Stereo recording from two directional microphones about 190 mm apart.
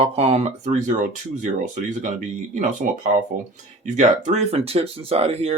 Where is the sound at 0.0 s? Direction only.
35° right (ahead or behind).